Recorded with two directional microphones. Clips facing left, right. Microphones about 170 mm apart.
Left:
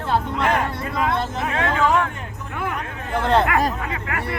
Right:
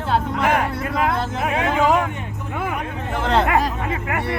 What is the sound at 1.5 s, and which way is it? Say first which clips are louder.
Speech: right 2 dB; 15° right (ahead or behind).